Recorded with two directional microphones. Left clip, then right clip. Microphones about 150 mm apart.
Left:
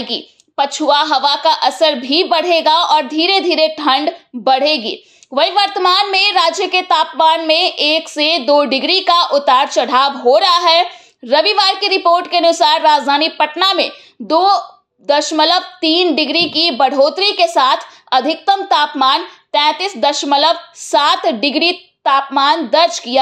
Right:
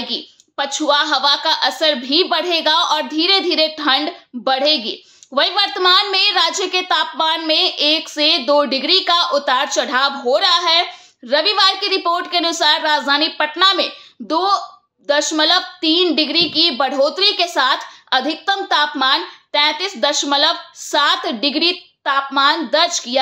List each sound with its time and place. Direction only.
0.1 s a woman's voice: 15° left (ahead or behind)